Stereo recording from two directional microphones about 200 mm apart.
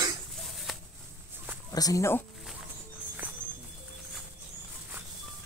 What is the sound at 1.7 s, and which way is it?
Speech, 15° left (ahead or behind).